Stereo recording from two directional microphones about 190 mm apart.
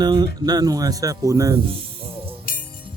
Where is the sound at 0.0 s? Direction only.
20° right (ahead or behind).